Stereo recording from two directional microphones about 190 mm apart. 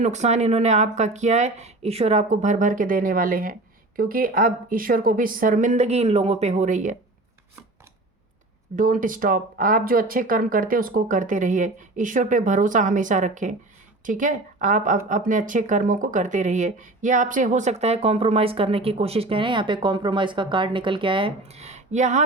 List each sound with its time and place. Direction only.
0.0 s speech: 35° right (ahead or behind)
8.7 s speech: 45° right (ahead or behind)